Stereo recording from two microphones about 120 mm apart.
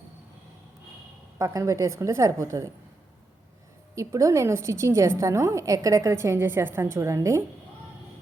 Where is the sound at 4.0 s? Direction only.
25° right (ahead or behind).